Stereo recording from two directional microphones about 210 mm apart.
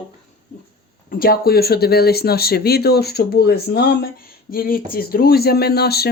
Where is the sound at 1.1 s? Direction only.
45° left (ahead or behind).